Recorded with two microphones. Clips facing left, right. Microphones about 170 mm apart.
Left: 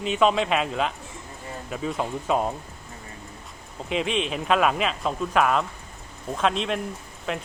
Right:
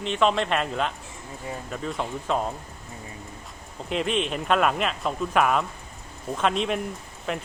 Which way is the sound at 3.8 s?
Centre (ahead or behind).